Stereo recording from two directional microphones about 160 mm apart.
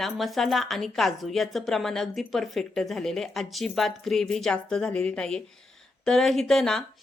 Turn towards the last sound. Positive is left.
turn(degrees=5)  # may be behind; listen again after turning